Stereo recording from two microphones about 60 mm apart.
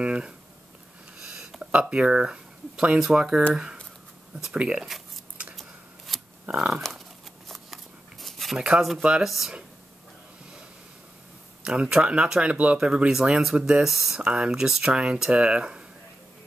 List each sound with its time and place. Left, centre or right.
0.0 s speech: centre
1.2 s a sound: centre
1.6 s speech: centre
4.6 s speech: centre
5.6 s scissors: centre
6.7 s speech: centre
7.4 s shuffling cards: centre
8.6 s speech: centre
11.6 s speech: centre
14.2 s speech: centre